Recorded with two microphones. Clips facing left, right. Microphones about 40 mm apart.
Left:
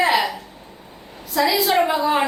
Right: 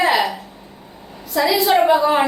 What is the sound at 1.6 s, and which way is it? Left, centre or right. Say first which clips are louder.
Speech: right 4 dB; centre.